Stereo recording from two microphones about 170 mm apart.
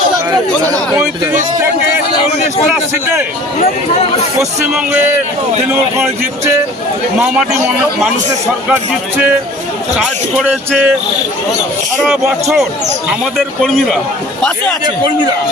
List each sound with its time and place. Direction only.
0.3 s speech: 20° right (ahead or behind)
4.7 s speech: 10° right (ahead or behind)
10.0 s speech: 5° right (ahead or behind)
12.0 s speech: centre (ahead or behind)